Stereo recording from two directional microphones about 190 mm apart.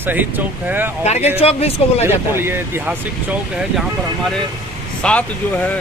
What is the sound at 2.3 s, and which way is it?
Speech, 10° right (ahead or behind).